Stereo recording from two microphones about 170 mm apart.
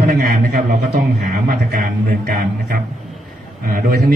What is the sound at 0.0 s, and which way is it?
A man's voice, 50° right (ahead or behind).